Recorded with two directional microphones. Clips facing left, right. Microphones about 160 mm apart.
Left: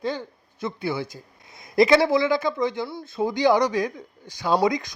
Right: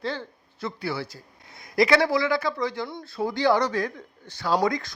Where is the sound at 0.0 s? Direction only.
15° left (ahead or behind).